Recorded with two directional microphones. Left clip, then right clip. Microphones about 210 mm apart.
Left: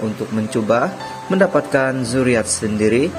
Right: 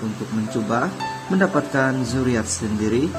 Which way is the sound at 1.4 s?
15° left (ahead or behind).